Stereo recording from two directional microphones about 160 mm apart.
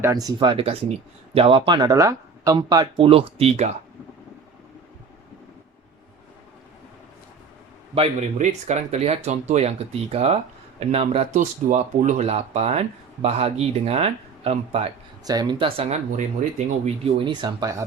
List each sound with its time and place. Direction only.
0.0 s speech: 25° right (ahead or behind)
3.1 s speech: 35° right (ahead or behind)
7.9 s speech: 45° right (ahead or behind)
15.2 s speech: 25° right (ahead or behind)